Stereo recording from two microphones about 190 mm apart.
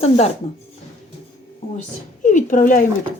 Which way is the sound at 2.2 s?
40° left (ahead or behind).